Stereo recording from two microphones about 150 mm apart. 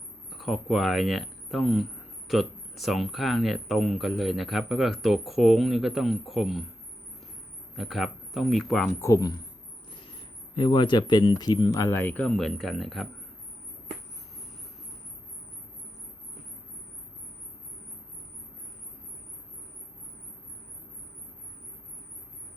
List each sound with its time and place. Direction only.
0.3 s speech: centre (ahead or behind)
7.8 s speech: centre (ahead or behind)
9.0 s speech: 20° left (ahead or behind)
9.9 s speech: 35° left (ahead or behind); by 13.1 s centre (ahead or behind)